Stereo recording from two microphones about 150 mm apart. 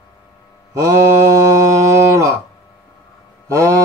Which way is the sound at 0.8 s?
20° right (ahead or behind).